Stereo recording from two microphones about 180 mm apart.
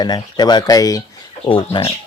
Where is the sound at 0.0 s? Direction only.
25° left (ahead or behind).